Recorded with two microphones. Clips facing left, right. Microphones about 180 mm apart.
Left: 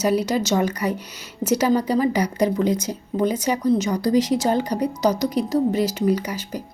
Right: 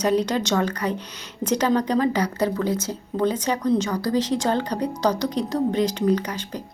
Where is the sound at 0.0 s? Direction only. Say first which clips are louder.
Left 1 dB; 10° left (ahead or behind).